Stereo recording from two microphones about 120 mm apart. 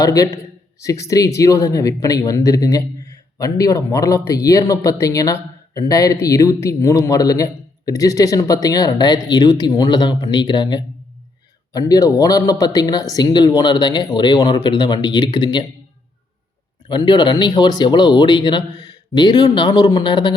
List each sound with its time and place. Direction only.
0.0 s speech: 30° left (ahead or behind)
16.9 s speech: 40° left (ahead or behind)